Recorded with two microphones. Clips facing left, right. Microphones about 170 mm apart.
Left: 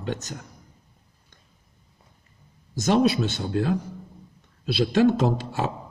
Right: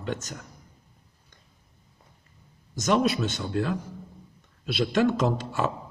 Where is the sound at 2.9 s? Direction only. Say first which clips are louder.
Left 3 dB; 35° left (ahead or behind).